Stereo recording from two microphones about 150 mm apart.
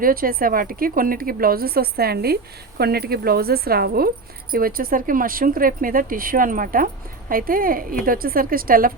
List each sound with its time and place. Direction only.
0.0 s a woman's voice: 75° right (ahead or behind); by 4.1 s 90° right
4.5 s speech: 75° right (ahead or behind)